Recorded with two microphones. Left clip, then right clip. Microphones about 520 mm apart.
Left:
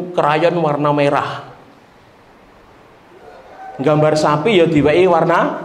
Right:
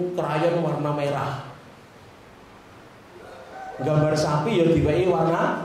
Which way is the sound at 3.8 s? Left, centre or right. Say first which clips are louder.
Left 9 dB; left.